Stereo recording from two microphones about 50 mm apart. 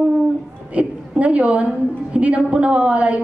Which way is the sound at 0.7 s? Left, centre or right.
Right.